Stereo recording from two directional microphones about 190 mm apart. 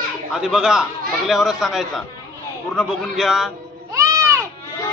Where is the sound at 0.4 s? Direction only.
5° right (ahead or behind).